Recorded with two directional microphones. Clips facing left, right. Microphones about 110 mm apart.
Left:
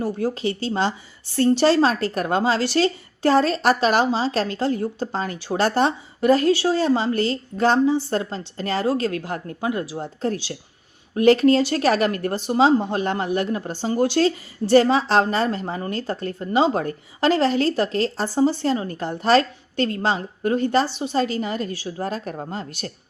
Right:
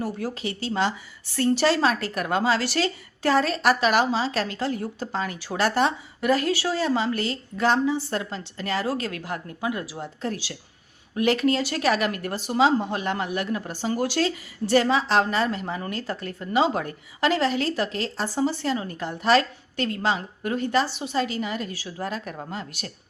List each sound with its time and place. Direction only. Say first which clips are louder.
0.0 s a woman's voice: left 6 dB; 25° left (ahead or behind)
10.2 s speech: left 6 dB; 35° left (ahead or behind)